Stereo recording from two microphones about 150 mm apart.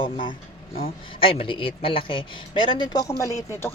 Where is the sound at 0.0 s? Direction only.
35° left (ahead or behind).